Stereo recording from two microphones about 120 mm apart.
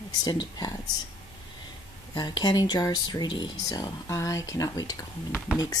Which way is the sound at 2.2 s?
35° left (ahead or behind).